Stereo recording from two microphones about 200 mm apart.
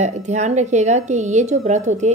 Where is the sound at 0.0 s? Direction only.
35° right (ahead or behind).